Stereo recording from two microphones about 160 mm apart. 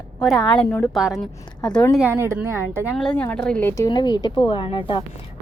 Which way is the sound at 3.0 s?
5° left (ahead or behind).